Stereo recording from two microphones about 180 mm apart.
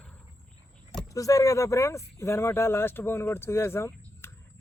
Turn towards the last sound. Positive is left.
turn(degrees=15)  # may be behind; listen again after turning